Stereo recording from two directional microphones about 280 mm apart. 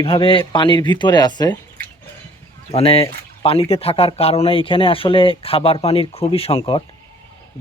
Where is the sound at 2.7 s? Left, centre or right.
Left.